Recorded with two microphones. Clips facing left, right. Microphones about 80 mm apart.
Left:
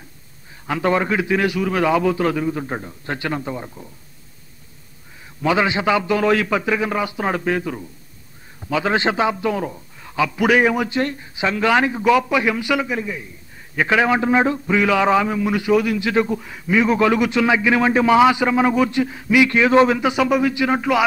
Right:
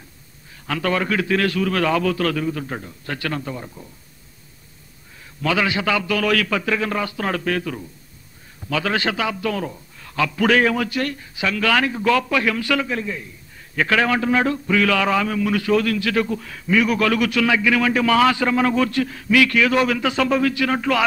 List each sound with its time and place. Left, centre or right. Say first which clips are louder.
0.7 s a man's voice: left 3 dB; left
5.4 s a man's voice: left 3 dB; left